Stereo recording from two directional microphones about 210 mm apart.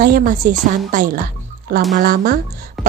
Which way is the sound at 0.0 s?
40° right (ahead or behind).